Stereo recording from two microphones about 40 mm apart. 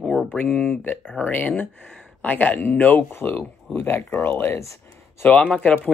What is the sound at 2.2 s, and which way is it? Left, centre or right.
Speech, left.